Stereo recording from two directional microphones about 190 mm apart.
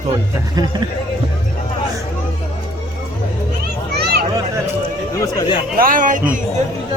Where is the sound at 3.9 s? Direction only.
55° right (ahead or behind).